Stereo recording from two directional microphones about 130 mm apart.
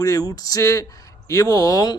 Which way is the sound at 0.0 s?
25° left (ahead or behind).